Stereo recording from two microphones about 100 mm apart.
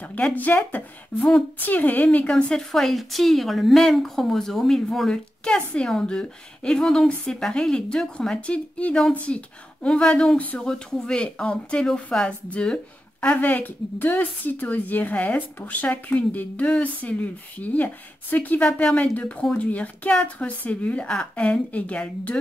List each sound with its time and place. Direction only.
0.0 s a woman's voice: 15° left (ahead or behind)